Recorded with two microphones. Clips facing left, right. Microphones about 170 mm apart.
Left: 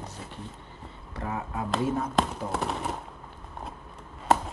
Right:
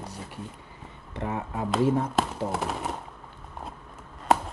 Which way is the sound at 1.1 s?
25° right (ahead or behind).